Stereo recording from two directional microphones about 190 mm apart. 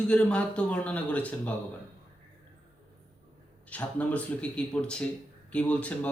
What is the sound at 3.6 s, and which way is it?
A man's voice, 5° left (ahead or behind).